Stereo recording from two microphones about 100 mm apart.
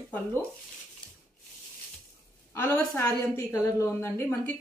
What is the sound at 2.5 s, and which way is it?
Speech, 15° left (ahead or behind).